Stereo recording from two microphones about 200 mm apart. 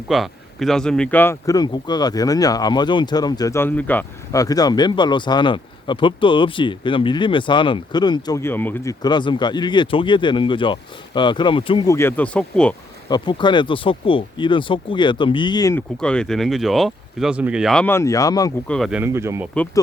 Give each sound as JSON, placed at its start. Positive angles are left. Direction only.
{"t": 0.1, "sound": "speech", "side_deg": 0}
{"t": 11.9, "sound": "speech", "side_deg": 10}
{"t": 13.1, "sound": "speech", "side_deg": 20}
{"t": 16.0, "sound": "speech", "side_deg": 5}
{"t": 18.7, "sound": "speech", "side_deg": 0}